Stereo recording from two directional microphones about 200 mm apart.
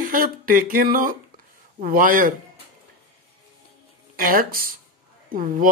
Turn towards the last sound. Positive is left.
turn(degrees=-45)  # may be behind; listen again after turning